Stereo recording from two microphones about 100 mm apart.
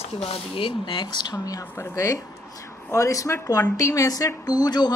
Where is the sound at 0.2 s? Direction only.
70° left (ahead or behind).